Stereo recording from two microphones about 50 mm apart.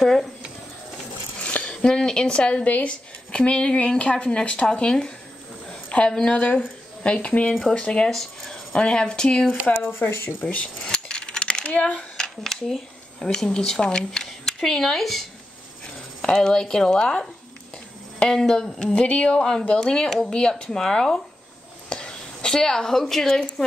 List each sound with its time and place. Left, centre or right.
0.0 s speech: centre
1.4 s speech: left
5.7 s a sound: left
6.6 s a woman's voice: centre
8.1 s speech: centre
8.7 s speech: centre
9.7 s speech: left
10.4 s coin: left
12.2 s speech: centre
21.8 s a sound: centre